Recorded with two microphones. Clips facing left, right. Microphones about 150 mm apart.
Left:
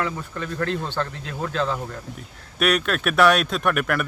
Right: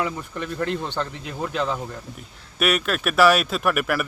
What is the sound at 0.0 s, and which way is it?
Speech, 15° right (ahead or behind).